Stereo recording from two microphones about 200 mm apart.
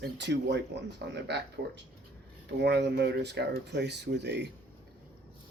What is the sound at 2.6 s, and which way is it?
Speech, 55° right (ahead or behind).